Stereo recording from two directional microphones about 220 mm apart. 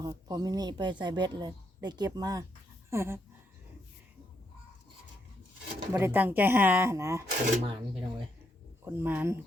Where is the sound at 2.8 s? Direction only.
10° right (ahead or behind).